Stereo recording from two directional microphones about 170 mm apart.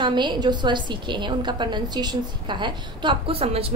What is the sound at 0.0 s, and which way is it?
A woman's voice, 25° right (ahead or behind).